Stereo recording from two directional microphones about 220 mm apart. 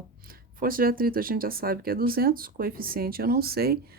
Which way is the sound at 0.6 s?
40° right (ahead or behind).